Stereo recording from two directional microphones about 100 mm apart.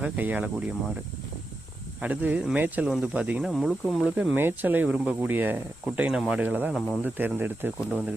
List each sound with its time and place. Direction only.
0.0 s speech: 15° right (ahead or behind)
2.0 s speech: 15° right (ahead or behind)
3.4 s speech: centre (ahead or behind)
4.4 s speech: 20° right (ahead or behind)
5.8 s speech: 10° right (ahead or behind)